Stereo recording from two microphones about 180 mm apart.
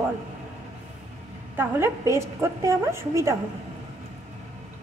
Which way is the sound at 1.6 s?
15° right (ahead or behind).